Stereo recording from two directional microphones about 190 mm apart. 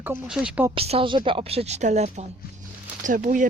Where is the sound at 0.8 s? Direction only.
30° right (ahead or behind).